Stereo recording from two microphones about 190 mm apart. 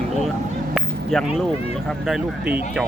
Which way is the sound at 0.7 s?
Centre (ahead or behind).